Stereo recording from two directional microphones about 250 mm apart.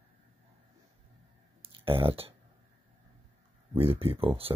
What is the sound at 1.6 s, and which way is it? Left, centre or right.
Clicking, right.